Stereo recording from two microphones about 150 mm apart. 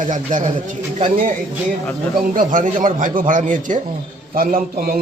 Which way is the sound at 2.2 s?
65° right (ahead or behind).